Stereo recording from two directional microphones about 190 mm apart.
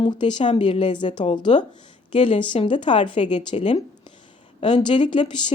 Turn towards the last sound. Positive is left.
turn(degrees=25)  # may be behind; listen again after turning